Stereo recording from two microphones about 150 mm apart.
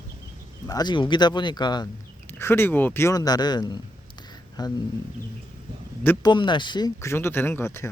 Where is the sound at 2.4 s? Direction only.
15° left (ahead or behind).